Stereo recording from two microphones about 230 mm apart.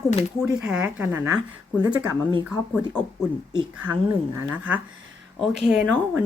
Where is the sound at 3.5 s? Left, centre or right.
Centre.